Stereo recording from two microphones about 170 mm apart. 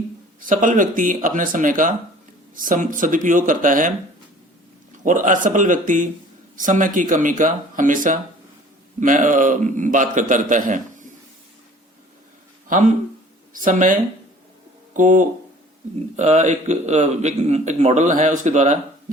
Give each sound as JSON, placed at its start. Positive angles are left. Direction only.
{"t": 0.3, "sound": "a man's voice", "side_deg": -50}
{"t": 12.6, "sound": "a man's voice", "side_deg": -50}